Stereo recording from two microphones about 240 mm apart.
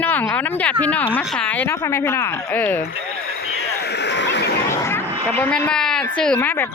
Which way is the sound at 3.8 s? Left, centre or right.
Left.